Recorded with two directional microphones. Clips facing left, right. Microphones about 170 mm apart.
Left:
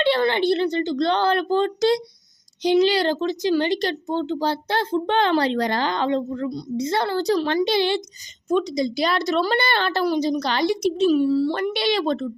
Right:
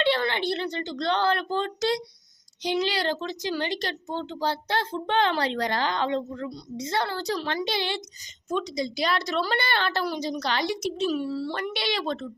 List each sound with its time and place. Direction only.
0.0 s a woman's voice: 30° left (ahead or behind)
6.9 s a woman's voice: 25° left (ahead or behind)
11.1 s speech: 15° left (ahead or behind)
11.6 s a woman's voice: 25° left (ahead or behind)